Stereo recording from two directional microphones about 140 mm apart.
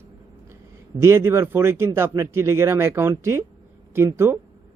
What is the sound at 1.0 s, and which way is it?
Speech, 20° right (ahead or behind).